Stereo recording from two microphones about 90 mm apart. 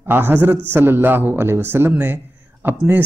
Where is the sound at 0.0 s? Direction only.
25° right (ahead or behind).